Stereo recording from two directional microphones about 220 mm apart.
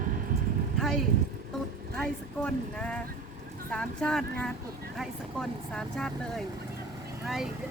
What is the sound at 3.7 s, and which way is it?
Speech, 5° left (ahead or behind).